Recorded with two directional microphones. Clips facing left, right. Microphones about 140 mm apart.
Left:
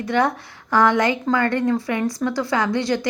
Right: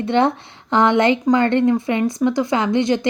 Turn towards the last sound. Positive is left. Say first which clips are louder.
# right 3 dB
turn(degrees=-20)  # may be behind; listen again after turning